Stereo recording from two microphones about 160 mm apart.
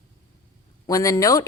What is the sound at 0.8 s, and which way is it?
Speech, 20° left (ahead or behind).